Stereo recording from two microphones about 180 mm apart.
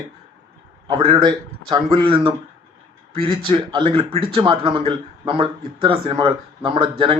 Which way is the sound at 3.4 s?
25° right (ahead or behind).